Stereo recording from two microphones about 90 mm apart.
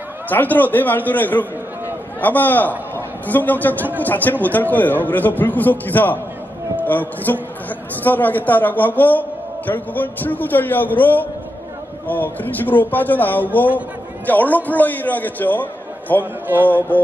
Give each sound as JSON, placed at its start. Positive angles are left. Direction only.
{"t": 0.3, "sound": "a man's voice", "side_deg": 20}